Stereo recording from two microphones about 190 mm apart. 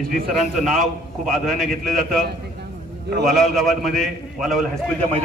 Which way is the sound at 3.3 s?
Centre (ahead or behind).